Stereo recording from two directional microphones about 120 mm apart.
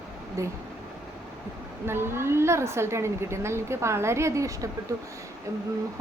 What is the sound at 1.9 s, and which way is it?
A woman's voice, 20° right (ahead or behind).